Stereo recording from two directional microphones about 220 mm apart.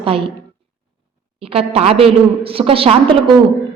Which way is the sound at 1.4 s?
25° right (ahead or behind).